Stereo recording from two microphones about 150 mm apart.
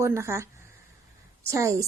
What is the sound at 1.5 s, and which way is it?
Speech, 20° right (ahead or behind).